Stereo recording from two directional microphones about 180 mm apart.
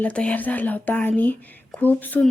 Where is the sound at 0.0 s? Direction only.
5° left (ahead or behind).